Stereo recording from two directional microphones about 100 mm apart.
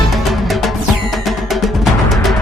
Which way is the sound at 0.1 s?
Centre (ahead or behind).